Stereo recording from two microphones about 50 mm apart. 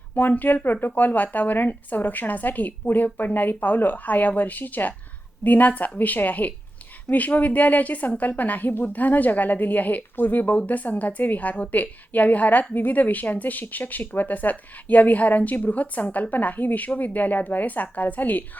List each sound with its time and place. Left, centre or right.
0.2 s a woman's voice: left